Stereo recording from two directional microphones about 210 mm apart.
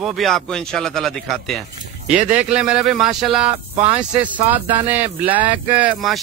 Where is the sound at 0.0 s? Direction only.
Centre (ahead or behind).